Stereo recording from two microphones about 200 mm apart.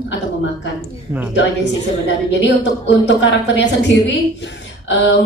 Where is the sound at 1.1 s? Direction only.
5° right (ahead or behind).